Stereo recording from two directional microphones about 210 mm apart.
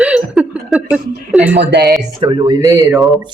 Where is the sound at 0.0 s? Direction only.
5° right (ahead or behind).